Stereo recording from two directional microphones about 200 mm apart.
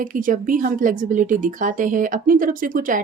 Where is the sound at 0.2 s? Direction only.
40° right (ahead or behind).